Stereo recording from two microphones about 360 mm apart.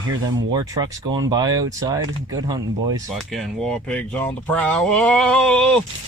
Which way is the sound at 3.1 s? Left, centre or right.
Centre.